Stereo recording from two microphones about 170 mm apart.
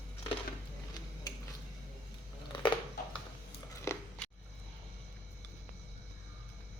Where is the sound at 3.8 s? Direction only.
15° left (ahead or behind).